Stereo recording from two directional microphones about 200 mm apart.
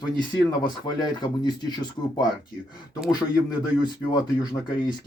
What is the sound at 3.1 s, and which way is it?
Speech, 20° left (ahead or behind).